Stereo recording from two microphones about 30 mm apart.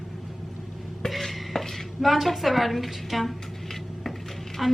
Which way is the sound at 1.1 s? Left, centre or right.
Centre.